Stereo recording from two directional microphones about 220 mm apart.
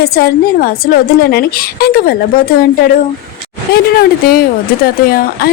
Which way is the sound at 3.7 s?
45° left (ahead or behind).